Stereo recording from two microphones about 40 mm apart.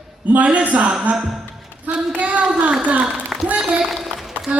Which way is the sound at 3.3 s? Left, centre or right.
Centre.